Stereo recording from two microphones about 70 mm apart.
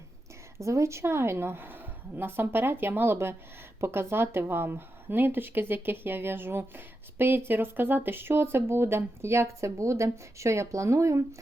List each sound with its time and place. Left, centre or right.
0.6 s speech: right